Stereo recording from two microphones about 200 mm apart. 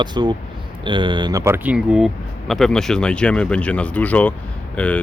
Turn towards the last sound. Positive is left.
turn(degrees=5)  # may be behind; listen again after turning